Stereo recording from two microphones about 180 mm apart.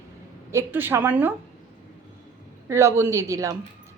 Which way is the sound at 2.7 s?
15° right (ahead or behind).